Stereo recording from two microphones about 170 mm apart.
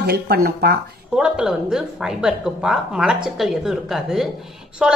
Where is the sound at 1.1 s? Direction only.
5° right (ahead or behind).